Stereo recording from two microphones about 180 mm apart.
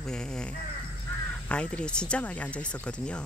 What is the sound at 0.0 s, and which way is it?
Speech, 5° left (ahead or behind).